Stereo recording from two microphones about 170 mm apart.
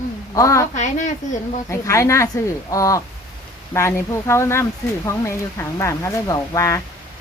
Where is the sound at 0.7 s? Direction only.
45° left (ahead or behind).